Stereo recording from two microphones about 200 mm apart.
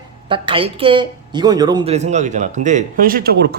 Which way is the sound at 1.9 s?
35° right (ahead or behind).